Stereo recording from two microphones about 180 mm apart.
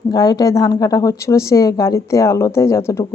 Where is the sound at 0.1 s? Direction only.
20° left (ahead or behind).